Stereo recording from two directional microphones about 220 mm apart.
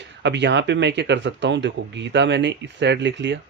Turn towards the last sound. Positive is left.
turn(degrees=-55)  # may be behind; listen again after turning